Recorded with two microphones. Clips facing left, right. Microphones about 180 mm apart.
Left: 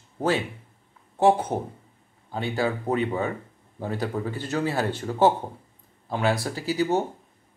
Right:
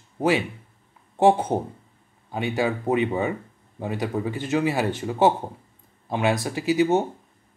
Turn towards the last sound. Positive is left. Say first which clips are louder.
# right 4 dB
turn(degrees=-20)  # may be behind; listen again after turning